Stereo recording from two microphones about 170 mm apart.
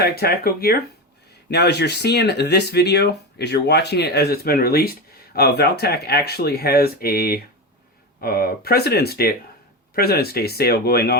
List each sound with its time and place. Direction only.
0.0 s speech: 65° left (ahead or behind)
1.5 s speech: 75° left (ahead or behind)